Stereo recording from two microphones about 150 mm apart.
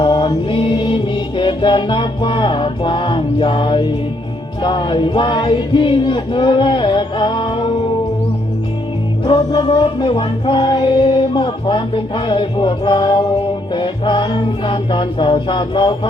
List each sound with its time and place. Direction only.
0.0 s mantra: 30° left (ahead or behind)
1.4 s music: 30° left (ahead or behind)
9.2 s music: 30° left (ahead or behind)